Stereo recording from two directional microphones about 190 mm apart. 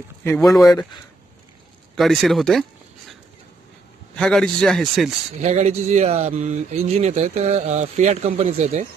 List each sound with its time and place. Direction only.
0.5 s speech: 20° left (ahead or behind)
2.0 s a man's voice: centre (ahead or behind)
4.2 s a man's voice: 5° left (ahead or behind)
5.4 s speech: 35° right (ahead or behind)